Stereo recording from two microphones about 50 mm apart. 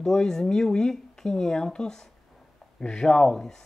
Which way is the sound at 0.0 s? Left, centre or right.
Centre.